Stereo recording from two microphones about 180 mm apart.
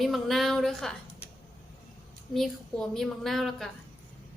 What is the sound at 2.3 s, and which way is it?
A woman's voice, centre (ahead or behind).